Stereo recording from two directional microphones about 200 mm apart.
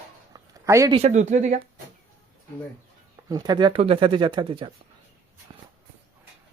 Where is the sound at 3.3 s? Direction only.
20° right (ahead or behind).